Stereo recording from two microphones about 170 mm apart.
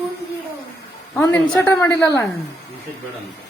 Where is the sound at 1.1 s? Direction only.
15° left (ahead or behind).